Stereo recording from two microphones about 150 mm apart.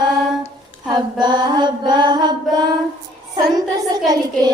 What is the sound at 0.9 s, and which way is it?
Mantra, 30° right (ahead or behind).